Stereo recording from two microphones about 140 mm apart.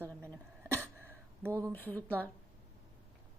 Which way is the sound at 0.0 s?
15° right (ahead or behind).